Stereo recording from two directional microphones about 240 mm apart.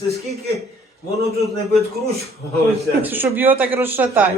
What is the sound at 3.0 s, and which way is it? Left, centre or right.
A woman's voice, centre.